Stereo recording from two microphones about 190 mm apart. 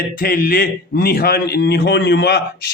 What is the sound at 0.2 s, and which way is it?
A man's voice, 50° left (ahead or behind).